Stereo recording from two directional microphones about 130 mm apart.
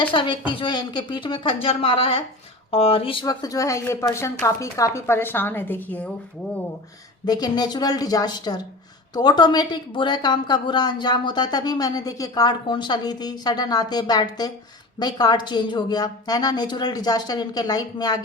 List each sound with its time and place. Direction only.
0.0 s a woman's voice: 40° left (ahead or behind)
3.2 s speech: 25° left (ahead or behind)
7.3 s a woman's voice: 30° left (ahead or behind)